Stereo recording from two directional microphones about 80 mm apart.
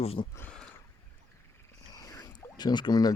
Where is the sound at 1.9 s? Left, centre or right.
Left.